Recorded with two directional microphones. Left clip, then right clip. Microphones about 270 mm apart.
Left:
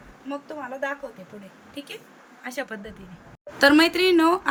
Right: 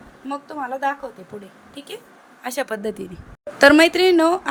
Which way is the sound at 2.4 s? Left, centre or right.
Right.